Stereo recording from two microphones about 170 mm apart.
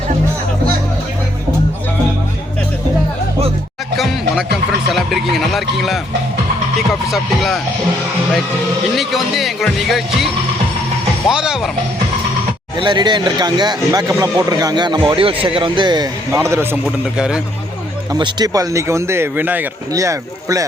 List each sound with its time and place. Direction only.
3.9 s music: centre (ahead or behind)
4.5 s speech: centre (ahead or behind)
9.0 s speech: centre (ahead or behind)
11.3 s speech: 5° right (ahead or behind)
12.7 s speech: 25° right (ahead or behind); by 17.4 s 5° right (ahead or behind)
18.1 s speech: 25° right (ahead or behind)